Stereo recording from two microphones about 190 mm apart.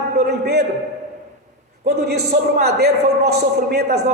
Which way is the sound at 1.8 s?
55° right (ahead or behind).